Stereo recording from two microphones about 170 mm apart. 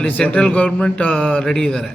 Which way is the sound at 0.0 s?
5° left (ahead or behind).